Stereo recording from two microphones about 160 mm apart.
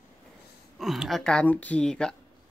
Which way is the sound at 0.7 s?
Centre (ahead or behind).